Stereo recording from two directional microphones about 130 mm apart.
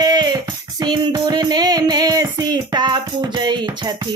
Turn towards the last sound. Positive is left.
turn(degrees=-35)  # may be behind; listen again after turning